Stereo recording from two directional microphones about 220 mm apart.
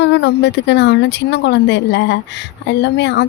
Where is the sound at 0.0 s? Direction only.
50° left (ahead or behind).